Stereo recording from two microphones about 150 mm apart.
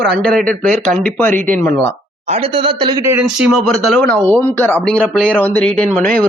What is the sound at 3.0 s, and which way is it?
Speech, 15° right (ahead or behind).